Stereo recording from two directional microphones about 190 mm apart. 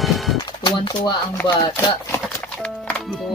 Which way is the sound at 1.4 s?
10° left (ahead or behind).